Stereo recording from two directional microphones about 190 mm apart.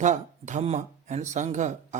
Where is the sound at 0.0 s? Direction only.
40° right (ahead or behind).